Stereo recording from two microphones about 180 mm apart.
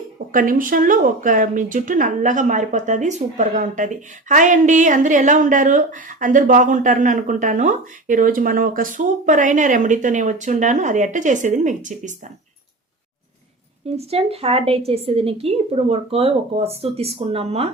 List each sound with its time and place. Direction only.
0.3 s speech: 50° right (ahead or behind)
13.9 s a woman's voice: 35° right (ahead or behind)